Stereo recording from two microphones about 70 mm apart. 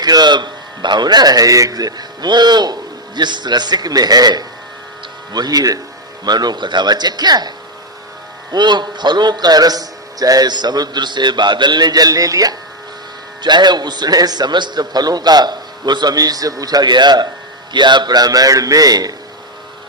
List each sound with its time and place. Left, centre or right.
0.0 s a man's voice: right
6.2 s a man's voice: right
8.5 s a man's voice: right
13.4 s a man's voice: right